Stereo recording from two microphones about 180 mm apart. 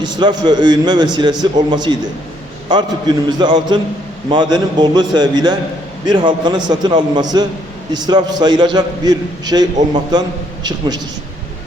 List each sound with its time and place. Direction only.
0.0 s a man's voice: 25° right (ahead or behind)